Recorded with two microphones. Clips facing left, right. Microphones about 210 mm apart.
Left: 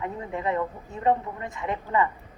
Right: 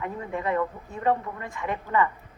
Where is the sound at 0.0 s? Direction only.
20° left (ahead or behind).